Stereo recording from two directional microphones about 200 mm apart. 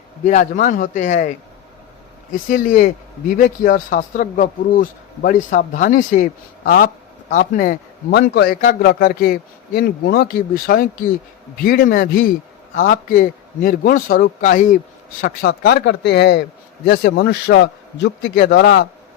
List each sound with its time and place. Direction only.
0.3 s speech: 40° left (ahead or behind)
2.3 s speech: 40° left (ahead or behind)
8.3 s a man's voice: 55° left (ahead or behind); by 14.8 s 40° left (ahead or behind)
15.2 s a man's voice: 50° left (ahead or behind)